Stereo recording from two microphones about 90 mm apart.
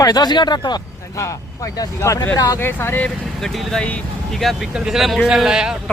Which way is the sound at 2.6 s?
25° left (ahead or behind).